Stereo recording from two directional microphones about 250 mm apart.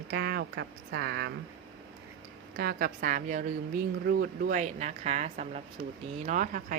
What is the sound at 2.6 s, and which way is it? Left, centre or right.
A woman's voice, right.